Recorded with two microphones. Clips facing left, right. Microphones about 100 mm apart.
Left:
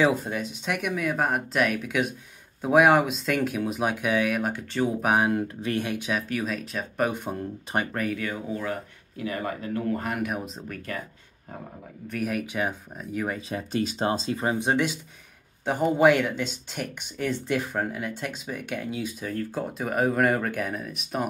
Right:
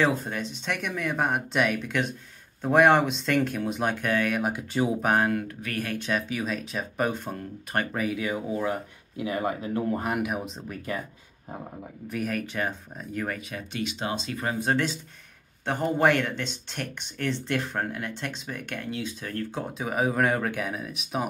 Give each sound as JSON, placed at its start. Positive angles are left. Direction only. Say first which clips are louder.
{"t": 0.0, "sound": "speech", "louder": "left 2 dB", "side_deg": 5}
{"t": 4.4, "sound": "speech", "louder": "even", "side_deg": -10}
{"t": 5.0, "sound": "speech", "louder": "left 2 dB", "side_deg": 10}
{"t": 5.3, "sound": "speech", "louder": "left 3 dB", "side_deg": 25}
{"t": 5.9, "sound": "speech", "louder": "even", "side_deg": 10}
{"t": 7.1, "sound": "speech", "louder": "left 1 dB", "side_deg": 15}
{"t": 7.9, "sound": "speech", "louder": "right 1 dB", "side_deg": -5}
{"t": 10.2, "sound": "speech", "louder": "even", "side_deg": 0}
{"t": 12.3, "sound": "speech", "louder": "left 2 dB", "side_deg": 10}
{"t": 13.5, "sound": "speech", "louder": "left 5 dB", "side_deg": 35}